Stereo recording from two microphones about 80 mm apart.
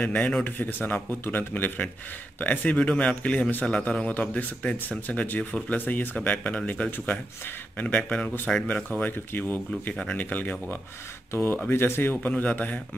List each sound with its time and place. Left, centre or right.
0.0 s a man's voice: centre
9.0 s a man's voice: left